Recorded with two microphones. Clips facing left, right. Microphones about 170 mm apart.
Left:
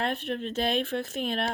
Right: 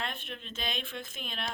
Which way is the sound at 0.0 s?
70° left (ahead or behind).